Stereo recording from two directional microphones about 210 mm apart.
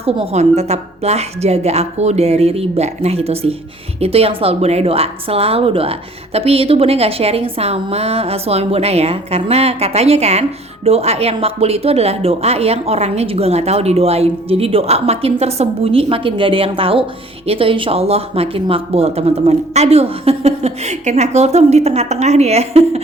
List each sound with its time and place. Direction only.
0.0 s speech: 30° right (ahead or behind)